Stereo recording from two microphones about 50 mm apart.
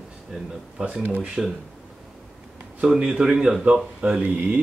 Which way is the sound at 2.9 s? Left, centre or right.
Centre.